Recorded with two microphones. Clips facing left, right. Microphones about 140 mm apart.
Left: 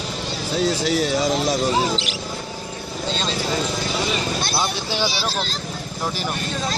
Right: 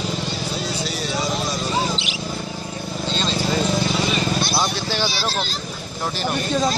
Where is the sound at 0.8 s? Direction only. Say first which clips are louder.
Left 7 dB; 90° left.